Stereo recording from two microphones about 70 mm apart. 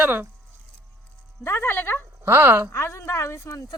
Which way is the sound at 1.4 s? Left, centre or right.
Left.